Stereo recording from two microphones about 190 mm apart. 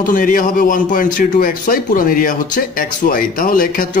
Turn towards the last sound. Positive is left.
turn(degrees=45)  # may be behind; listen again after turning